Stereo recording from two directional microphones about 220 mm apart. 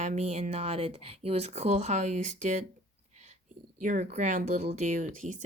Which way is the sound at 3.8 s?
35° right (ahead or behind).